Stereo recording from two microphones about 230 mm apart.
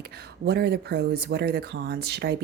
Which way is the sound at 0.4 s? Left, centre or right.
Right.